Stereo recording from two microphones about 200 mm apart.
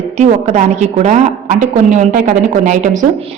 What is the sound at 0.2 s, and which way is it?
A woman's voice, 35° right (ahead or behind).